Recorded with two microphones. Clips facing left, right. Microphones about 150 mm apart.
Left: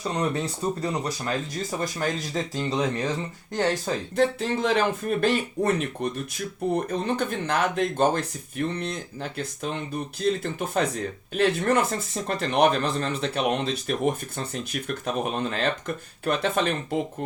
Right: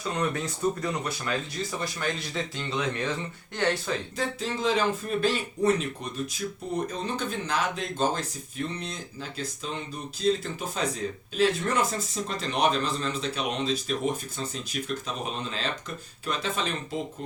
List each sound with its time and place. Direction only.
0.1 s speech: 35° left (ahead or behind)
4.2 s speech: 60° left (ahead or behind)